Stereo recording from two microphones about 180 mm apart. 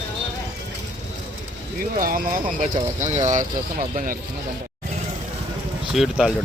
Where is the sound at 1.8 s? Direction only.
50° right (ahead or behind).